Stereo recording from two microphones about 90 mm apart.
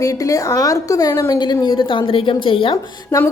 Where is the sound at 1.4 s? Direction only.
55° left (ahead or behind); by 2.7 s 75° left (ahead or behind).